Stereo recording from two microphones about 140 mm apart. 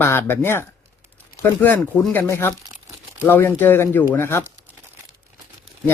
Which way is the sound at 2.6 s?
20° right (ahead or behind).